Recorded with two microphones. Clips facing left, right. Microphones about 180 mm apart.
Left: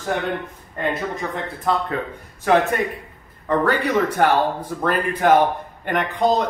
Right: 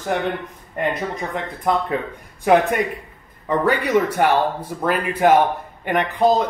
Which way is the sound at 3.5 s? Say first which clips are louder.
Right 1 dB; 10° right (ahead or behind).